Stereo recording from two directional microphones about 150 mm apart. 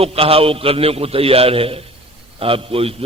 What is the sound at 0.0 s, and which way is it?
A man's voice, 40° right (ahead or behind).